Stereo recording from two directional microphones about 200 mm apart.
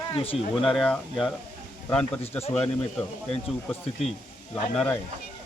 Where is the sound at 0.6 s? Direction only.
Centre (ahead or behind).